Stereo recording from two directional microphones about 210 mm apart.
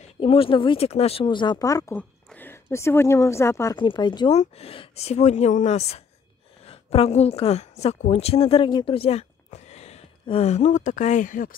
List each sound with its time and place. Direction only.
0.0 s a woman's voice: 25° left (ahead or behind)